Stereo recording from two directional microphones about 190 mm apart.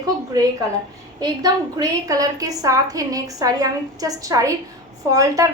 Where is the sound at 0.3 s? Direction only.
20° right (ahead or behind).